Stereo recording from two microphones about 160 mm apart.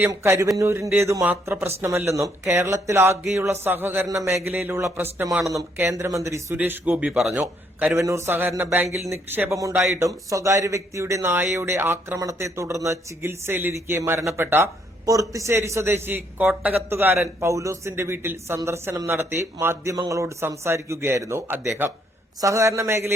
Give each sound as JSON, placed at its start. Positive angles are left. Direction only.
{"t": 0.0, "sound": "a man's voice", "side_deg": -15}